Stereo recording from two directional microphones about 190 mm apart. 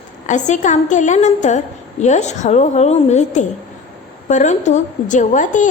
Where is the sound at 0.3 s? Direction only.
40° left (ahead or behind).